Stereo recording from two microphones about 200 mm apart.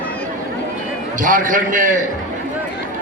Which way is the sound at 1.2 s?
40° right (ahead or behind).